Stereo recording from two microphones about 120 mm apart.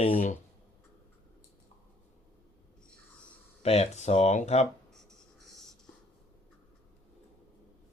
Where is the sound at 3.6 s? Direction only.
60° left (ahead or behind).